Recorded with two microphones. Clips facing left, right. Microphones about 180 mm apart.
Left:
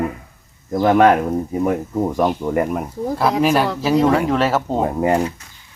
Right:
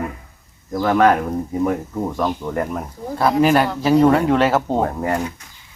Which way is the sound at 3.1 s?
Centre (ahead or behind).